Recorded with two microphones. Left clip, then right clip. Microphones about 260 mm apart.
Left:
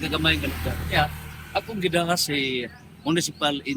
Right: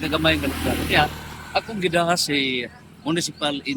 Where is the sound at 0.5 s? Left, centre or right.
Right.